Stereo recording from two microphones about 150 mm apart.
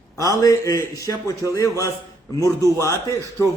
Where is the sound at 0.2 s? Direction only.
25° left (ahead or behind).